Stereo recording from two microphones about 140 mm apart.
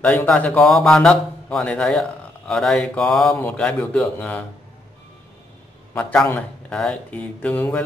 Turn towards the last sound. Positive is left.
turn(degrees=10)  # may be behind; listen again after turning